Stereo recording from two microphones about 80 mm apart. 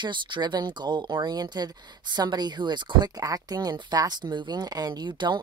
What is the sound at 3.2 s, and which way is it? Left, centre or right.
Speech, right.